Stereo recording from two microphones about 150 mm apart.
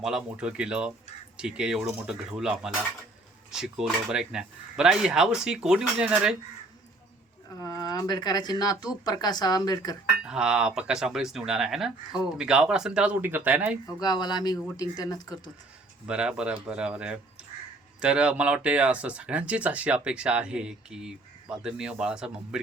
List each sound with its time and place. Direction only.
0.0 s speech: 5° right (ahead or behind)
7.6 s speech: 25° left (ahead or behind)
10.2 s speech: 5° right (ahead or behind)
13.8 s speech: 25° left (ahead or behind)
16.0 s speech: 5° right (ahead or behind)